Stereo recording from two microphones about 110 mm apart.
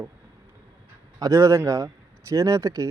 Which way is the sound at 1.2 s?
30° right (ahead or behind).